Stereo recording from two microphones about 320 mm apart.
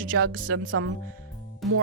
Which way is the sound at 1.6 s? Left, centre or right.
Centre.